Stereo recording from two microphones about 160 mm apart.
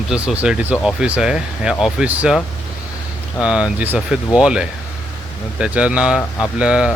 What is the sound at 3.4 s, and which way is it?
Speech, 5° right (ahead or behind).